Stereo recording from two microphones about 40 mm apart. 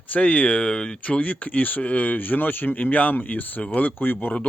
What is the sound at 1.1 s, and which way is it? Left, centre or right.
Speech, left.